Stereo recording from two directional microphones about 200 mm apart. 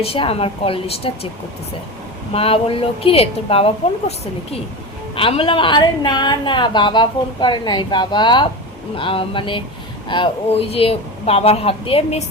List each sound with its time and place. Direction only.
0.0 s a woman's voice: 30° left (ahead or behind)
2.3 s a woman's voice: 30° left (ahead or behind)
5.1 s a woman's voice: 25° left (ahead or behind)